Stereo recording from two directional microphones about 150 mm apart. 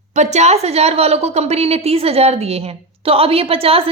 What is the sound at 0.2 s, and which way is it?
A woman's voice, 50° right (ahead or behind).